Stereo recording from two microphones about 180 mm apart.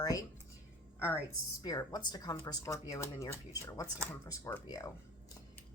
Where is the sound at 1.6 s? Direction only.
20° left (ahead or behind).